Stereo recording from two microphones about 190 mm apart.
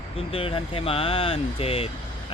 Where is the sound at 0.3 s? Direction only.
30° left (ahead or behind).